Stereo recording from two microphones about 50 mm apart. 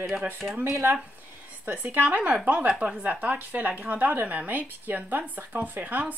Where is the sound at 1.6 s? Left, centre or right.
Right.